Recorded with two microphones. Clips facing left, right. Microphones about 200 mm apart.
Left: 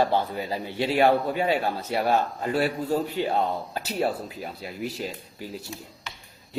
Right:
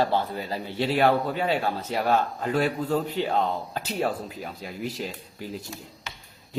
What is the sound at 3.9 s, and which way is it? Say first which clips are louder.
Speech: left 1 dB; 40° left (ahead or behind).